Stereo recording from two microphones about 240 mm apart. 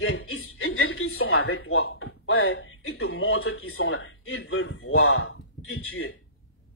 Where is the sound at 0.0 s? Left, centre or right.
Left.